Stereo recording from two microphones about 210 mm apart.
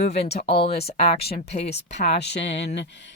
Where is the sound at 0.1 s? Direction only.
50° left (ahead or behind).